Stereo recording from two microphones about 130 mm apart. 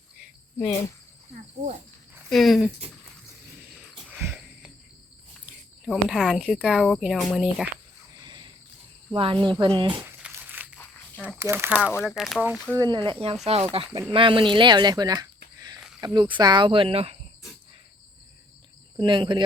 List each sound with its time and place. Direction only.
2.3 s speech: centre (ahead or behind)
3.8 s wheeze: 10° right (ahead or behind)
5.8 s speech: 5° right (ahead or behind)
8.2 s a sound: 35° right (ahead or behind)
9.1 s speech: 40° right (ahead or behind)
10.0 s crumpling: 10° right (ahead or behind)
11.3 s speech: 20° right (ahead or behind)
11.9 s speech: 5° right (ahead or behind)
12.7 s speech: 30° right (ahead or behind); by 17.2 s 50° right (ahead or behind)
18.9 s speech: 40° right (ahead or behind)